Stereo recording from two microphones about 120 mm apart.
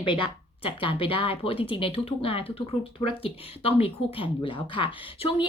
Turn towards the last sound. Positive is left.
turn(degrees=50)  # may be behind; listen again after turning